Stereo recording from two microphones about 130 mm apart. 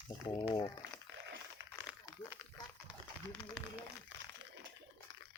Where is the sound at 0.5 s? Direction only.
30° left (ahead or behind).